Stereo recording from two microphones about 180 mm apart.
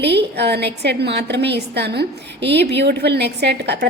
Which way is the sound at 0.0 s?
70° right (ahead or behind).